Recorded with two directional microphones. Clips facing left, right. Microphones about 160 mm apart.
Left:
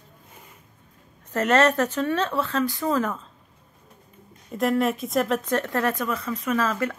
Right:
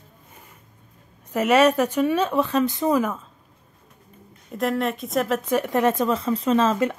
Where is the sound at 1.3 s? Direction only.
10° right (ahead or behind).